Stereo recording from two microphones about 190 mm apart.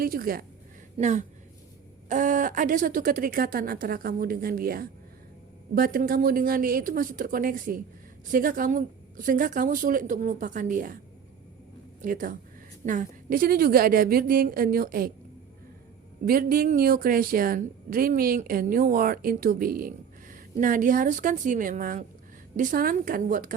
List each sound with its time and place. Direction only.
0.0 s speech: 50° right (ahead or behind)
0.9 s speech: 40° right (ahead or behind)
12.0 s speech: 45° right (ahead or behind)
16.2 s speech: 50° right (ahead or behind)